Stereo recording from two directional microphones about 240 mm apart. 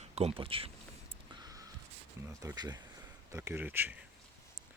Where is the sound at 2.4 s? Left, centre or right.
Centre.